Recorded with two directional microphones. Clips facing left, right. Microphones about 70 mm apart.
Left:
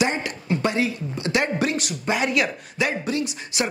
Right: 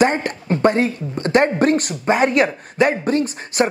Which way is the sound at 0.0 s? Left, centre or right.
Right.